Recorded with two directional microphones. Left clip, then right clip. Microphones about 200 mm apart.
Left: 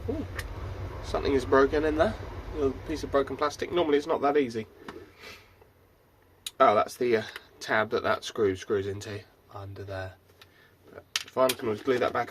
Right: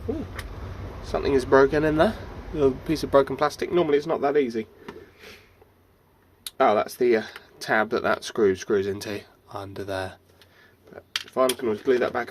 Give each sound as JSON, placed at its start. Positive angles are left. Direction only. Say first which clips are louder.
{"t": 1.0, "sound": "speech", "louder": "right 4 dB", "side_deg": -25}
{"t": 6.6, "sound": "speech", "louder": "right 2 dB", "side_deg": -25}
{"t": 11.3, "sound": "speech", "louder": "right 3 dB", "side_deg": -25}